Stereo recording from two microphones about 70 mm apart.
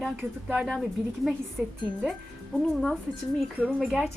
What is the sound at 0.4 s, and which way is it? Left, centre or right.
Speech, centre.